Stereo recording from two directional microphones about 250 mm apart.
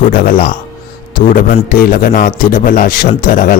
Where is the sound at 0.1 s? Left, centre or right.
Left.